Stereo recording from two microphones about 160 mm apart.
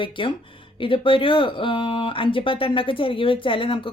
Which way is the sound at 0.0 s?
30° left (ahead or behind).